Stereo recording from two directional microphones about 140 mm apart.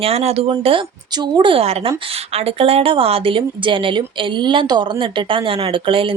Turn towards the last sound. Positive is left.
turn(degrees=-40)  # may be behind; listen again after turning